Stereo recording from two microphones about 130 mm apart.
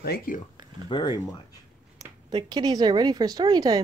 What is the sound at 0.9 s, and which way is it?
Speech, 35° left (ahead or behind).